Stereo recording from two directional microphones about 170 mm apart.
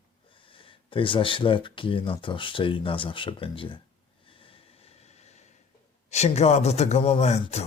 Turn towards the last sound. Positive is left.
turn(degrees=40)  # may be behind; listen again after turning